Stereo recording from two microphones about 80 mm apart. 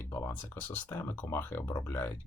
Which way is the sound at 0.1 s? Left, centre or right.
Left.